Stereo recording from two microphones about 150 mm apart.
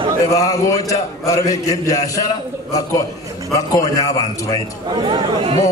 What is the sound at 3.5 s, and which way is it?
A man's voice, 25° left (ahead or behind).